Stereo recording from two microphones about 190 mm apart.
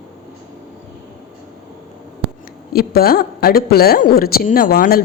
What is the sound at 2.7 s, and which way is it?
Speech, 55° left (ahead or behind).